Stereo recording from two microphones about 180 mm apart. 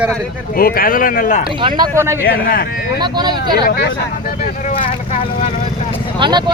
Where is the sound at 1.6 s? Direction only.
20° right (ahead or behind).